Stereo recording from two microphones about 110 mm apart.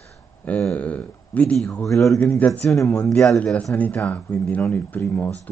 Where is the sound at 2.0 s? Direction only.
25° left (ahead or behind).